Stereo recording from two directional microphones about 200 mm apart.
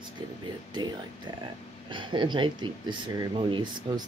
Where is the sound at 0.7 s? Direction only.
20° right (ahead or behind).